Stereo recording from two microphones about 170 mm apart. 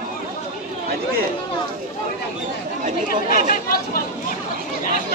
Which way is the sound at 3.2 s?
55° left (ahead or behind).